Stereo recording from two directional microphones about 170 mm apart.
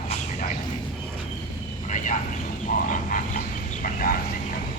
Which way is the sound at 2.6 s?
50° left (ahead or behind).